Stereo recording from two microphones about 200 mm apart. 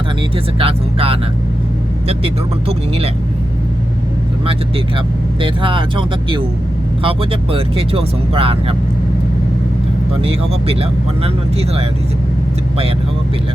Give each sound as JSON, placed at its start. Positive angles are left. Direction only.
{"t": 0.6, "sound": "speech", "side_deg": -30}
{"t": 5.4, "sound": "speech", "side_deg": -25}
{"t": 10.2, "sound": "speech", "side_deg": -30}